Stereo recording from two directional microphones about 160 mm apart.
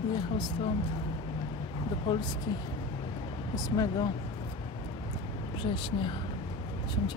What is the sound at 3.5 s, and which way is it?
Speech, 20° left (ahead or behind).